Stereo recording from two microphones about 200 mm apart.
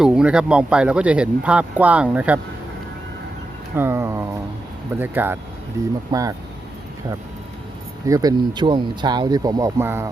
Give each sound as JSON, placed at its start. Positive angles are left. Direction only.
{"t": 0.0, "sound": "speech", "side_deg": -5}
{"t": 3.8, "sound": "speech", "side_deg": -10}
{"t": 8.0, "sound": "speech", "side_deg": -15}